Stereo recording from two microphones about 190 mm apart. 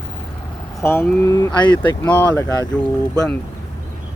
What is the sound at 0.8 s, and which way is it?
Speech, 15° left (ahead or behind).